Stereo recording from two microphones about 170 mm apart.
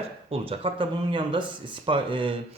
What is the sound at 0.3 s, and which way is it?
Speech, 35° right (ahead or behind).